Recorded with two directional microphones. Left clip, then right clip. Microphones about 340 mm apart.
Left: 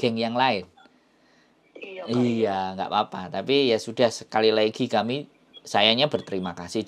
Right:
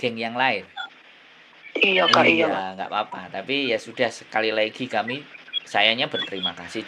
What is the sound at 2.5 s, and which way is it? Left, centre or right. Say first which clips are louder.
Speech: left 1 dB; left.